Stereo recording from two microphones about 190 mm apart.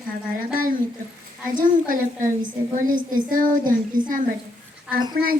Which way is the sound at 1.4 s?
45° right (ahead or behind).